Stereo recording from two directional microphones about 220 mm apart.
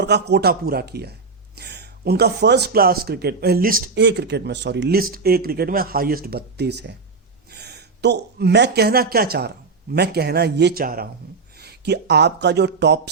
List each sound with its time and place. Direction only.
0.0 s speech: 50° right (ahead or behind)